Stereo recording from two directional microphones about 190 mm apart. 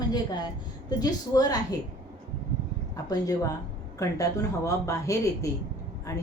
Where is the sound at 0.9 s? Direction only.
20° left (ahead or behind).